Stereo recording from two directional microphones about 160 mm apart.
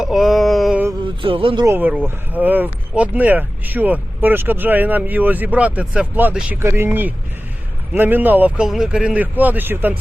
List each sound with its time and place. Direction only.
0.0 s mantra: 5° right (ahead or behind)
1.2 s speech: 35° right (ahead or behind)
1.6 s speech: 10° right (ahead or behind)